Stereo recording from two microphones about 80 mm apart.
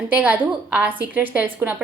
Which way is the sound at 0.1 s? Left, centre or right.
Right.